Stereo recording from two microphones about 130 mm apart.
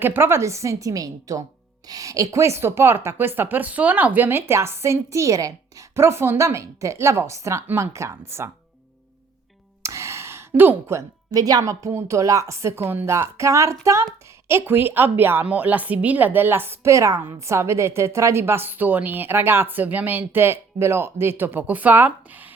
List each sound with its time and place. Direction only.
0.0 s a woman's voice: 15° right (ahead or behind)
9.8 s a woman's voice: 20° right (ahead or behind)